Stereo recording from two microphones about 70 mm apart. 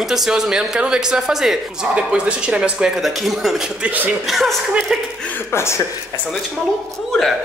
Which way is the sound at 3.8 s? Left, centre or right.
Right.